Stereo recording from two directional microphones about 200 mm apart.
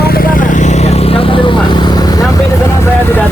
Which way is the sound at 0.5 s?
35° left (ahead or behind).